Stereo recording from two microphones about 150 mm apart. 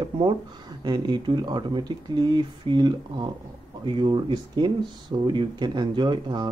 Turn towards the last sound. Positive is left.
turn(degrees=-30)  # may be behind; listen again after turning